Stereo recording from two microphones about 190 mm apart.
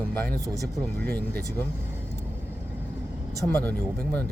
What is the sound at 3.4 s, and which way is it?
Speech, 5° left (ahead or behind).